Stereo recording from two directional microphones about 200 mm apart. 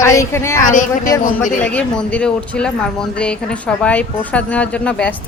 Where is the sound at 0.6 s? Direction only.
40° left (ahead or behind).